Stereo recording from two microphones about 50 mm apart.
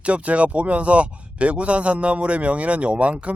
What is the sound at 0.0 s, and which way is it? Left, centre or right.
Speech, right.